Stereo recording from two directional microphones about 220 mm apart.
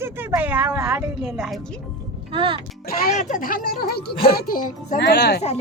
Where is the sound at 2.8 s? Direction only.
40° left (ahead or behind).